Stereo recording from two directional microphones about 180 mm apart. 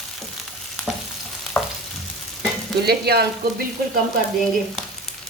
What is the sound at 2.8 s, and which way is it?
Frying, 60° right (ahead or behind).